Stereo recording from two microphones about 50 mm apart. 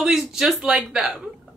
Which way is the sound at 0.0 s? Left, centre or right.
Centre.